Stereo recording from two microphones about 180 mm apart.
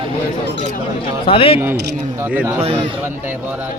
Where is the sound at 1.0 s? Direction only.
30° left (ahead or behind).